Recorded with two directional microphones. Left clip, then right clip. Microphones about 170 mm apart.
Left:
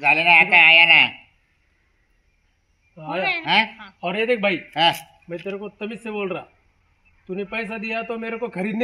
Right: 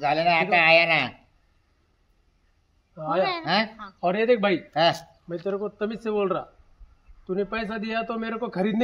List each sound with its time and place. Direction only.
0.0 s a man's voice: 30° right (ahead or behind)
2.9 s speech: centre (ahead or behind)
3.4 s a man's voice: 35° right (ahead or behind)
4.0 s a man's voice: 5° left (ahead or behind)
4.7 s a man's voice: 35° right (ahead or behind)
5.3 s a man's voice: 5° left (ahead or behind)